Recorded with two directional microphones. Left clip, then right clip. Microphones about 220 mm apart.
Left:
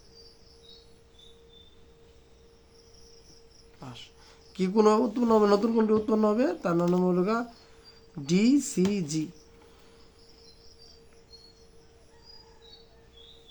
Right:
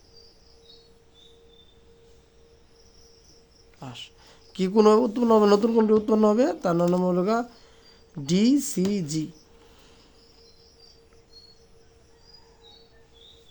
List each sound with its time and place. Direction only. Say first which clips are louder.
3.8 s speech: right 5 dB; 35° right (ahead or behind)